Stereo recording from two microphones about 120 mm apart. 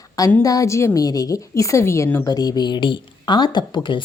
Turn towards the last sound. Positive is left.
turn(degrees=40)  # may be behind; listen again after turning